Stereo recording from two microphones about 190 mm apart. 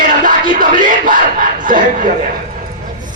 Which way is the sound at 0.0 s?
45° right (ahead or behind).